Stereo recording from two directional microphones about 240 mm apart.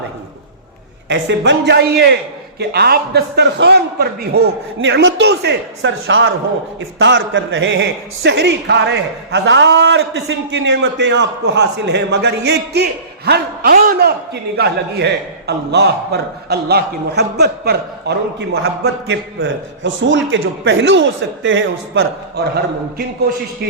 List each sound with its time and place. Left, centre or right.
1.0 s a man's voice: right